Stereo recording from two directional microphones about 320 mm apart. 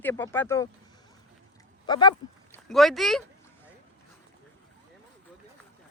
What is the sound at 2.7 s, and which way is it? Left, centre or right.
Speech, centre.